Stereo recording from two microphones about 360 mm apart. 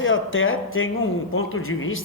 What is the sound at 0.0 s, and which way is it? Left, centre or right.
Speech, left.